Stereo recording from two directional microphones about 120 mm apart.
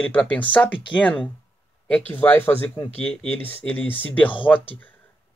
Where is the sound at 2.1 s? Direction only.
15° left (ahead or behind).